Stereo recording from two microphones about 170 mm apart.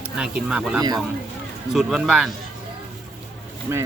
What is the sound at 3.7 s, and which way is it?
Speech, 15° right (ahead or behind).